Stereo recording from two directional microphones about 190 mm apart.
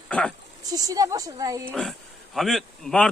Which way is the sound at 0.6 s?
20° right (ahead or behind).